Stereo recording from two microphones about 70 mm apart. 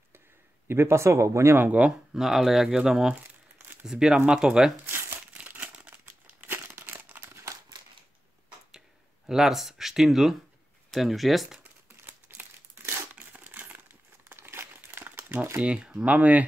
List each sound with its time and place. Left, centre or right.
0.7 s speech: right
1.7 s speech: centre
2.1 s speech: centre
4.8 s crumpling: right
6.4 s crumpling: right
9.3 s speech: centre
12.1 s crumpling: right
15.6 s speech: centre